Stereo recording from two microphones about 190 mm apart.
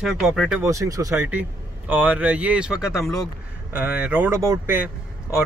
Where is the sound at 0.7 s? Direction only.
15° right (ahead or behind).